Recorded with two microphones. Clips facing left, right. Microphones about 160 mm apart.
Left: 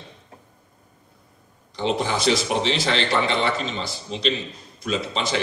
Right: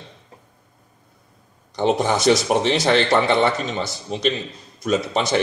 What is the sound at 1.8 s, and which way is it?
Speech, 50° right (ahead or behind).